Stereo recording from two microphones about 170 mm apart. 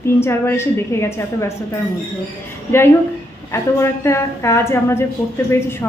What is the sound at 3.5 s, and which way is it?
A woman's voice, 15° left (ahead or behind).